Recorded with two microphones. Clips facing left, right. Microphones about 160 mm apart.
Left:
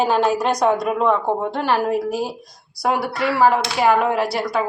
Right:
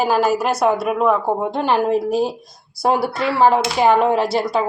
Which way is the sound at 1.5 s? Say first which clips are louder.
Right 4 dB; 20° right (ahead or behind).